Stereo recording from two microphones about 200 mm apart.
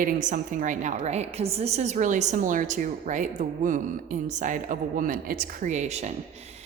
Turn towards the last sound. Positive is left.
turn(degrees=-35)  # may be behind; listen again after turning